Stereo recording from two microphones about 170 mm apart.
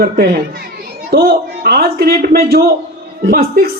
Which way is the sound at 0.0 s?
65° right (ahead or behind).